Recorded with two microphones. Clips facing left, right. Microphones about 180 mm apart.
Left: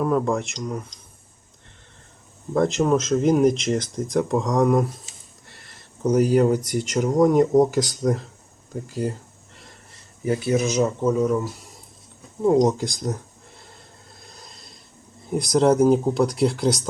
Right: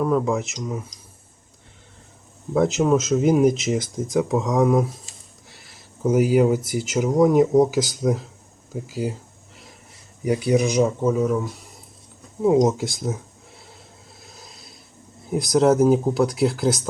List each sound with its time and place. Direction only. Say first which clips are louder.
0.0 s speech: right 1 dB; centre (ahead or behind)
2.5 s speech: right 1 dB; 5° right (ahead or behind)
8.7 s a sound: even; 5° right (ahead or behind)
10.4 s speech: right 2 dB; 15° right (ahead or behind)
10.8 s speech: even; 5° right (ahead or behind)
14.2 s a sound: right 1 dB; centre (ahead or behind)
15.2 s speech: right 1 dB; centre (ahead or behind)